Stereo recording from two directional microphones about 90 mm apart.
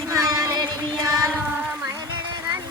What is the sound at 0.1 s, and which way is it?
Child singing, 35° right (ahead or behind).